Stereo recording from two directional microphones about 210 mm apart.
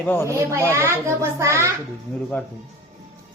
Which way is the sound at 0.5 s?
10° right (ahead or behind).